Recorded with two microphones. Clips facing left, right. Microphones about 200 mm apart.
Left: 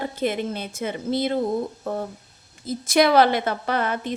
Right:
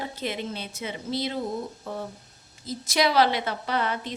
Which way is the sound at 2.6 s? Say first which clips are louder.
Left 6 dB; 55° left (ahead or behind).